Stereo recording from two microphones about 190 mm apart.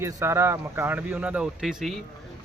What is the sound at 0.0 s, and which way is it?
A man's voice, 15° right (ahead or behind).